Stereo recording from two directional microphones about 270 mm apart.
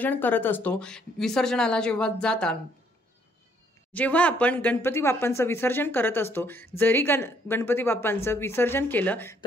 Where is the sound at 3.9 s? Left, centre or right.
Centre.